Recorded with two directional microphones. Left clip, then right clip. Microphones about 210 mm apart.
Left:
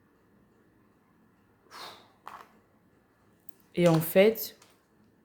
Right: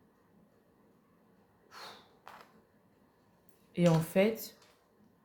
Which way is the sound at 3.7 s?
40° left (ahead or behind).